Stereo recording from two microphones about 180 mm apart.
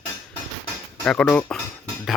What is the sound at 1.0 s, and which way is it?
Speech, 5° left (ahead or behind).